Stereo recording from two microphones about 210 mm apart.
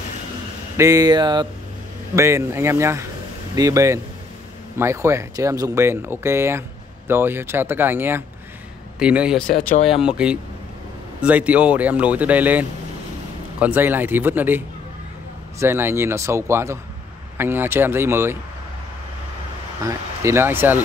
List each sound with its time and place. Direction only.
0.7 s speech: 15° right (ahead or behind)
15.6 s speech: 10° right (ahead or behind)
19.8 s speech: 15° right (ahead or behind)